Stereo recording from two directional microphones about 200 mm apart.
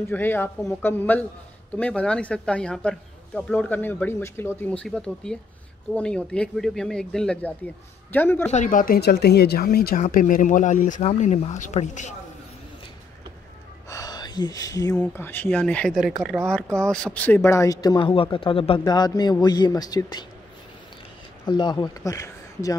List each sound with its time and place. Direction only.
0.1 s speech: 10° left (ahead or behind)
8.5 s speech: 40° left (ahead or behind)
13.8 s speech: 15° left (ahead or behind)
21.5 s speech: 20° left (ahead or behind)